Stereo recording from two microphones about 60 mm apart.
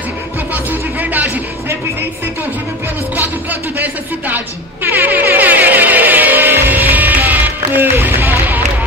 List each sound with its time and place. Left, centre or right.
0.7 s music: right
3.7 s speech: right
4.8 s music: right